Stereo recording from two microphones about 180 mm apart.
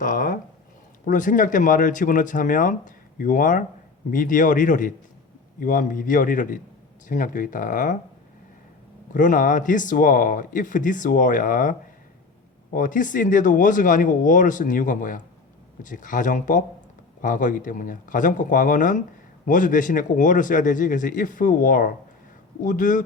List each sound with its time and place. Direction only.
0.0 s speech: 50° left (ahead or behind)
9.1 s speech: 45° left (ahead or behind)